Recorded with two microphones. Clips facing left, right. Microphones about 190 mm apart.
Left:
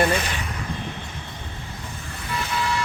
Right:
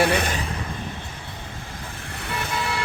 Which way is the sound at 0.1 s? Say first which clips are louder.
Right 1 dB; 60° right (ahead or behind).